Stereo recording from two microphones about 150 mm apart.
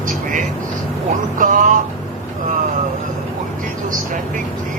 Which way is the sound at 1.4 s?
60° right (ahead or behind).